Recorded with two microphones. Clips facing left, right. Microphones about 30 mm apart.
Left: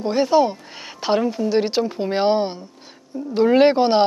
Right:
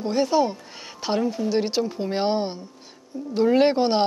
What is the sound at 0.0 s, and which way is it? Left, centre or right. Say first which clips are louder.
A woman's voice: left 4 dB; centre.